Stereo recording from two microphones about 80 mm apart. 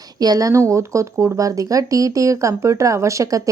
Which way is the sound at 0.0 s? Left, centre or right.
Right.